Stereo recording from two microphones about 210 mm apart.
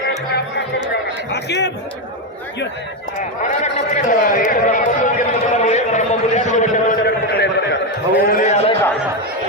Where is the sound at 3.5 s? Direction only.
35° left (ahead or behind).